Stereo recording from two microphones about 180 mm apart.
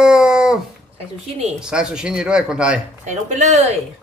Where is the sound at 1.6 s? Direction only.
5° right (ahead or behind).